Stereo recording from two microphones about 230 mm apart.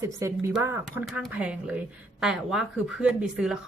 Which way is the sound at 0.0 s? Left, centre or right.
Centre.